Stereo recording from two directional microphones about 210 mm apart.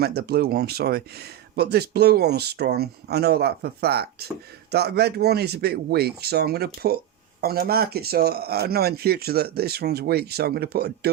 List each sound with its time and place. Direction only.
0.0 s speech: 50° right (ahead or behind)